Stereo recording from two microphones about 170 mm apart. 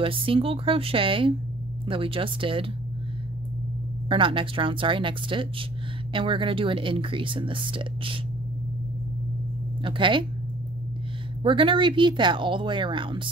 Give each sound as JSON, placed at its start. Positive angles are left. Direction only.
{"t": 0.0, "sound": "speech", "side_deg": -30}
{"t": 4.1, "sound": "speech", "side_deg": -30}
{"t": 9.8, "sound": "speech", "side_deg": -30}
{"t": 11.4, "sound": "speech", "side_deg": -30}